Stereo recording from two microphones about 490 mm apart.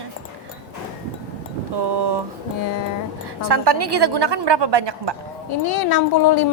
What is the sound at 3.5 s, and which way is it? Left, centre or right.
A woman's voice, right.